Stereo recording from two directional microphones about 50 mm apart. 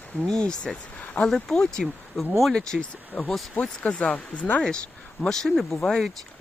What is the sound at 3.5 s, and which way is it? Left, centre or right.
Speech, left.